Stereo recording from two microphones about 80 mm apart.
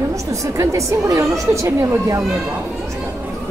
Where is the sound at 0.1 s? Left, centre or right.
Right.